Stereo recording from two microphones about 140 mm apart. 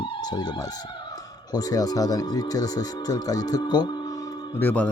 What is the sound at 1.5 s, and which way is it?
Speech, 25° left (ahead or behind).